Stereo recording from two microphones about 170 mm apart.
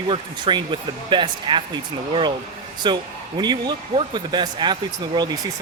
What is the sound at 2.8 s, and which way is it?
Speech, 25° right (ahead or behind).